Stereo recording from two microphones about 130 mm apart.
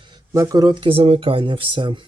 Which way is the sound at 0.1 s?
25° right (ahead or behind).